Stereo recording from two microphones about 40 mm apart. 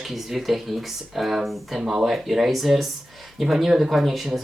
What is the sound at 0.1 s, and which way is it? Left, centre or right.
Speech, centre.